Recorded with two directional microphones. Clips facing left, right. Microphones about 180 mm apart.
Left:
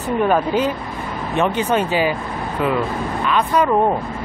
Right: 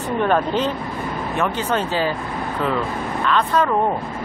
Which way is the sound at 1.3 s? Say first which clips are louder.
Left 4 dB; 20° left (ahead or behind).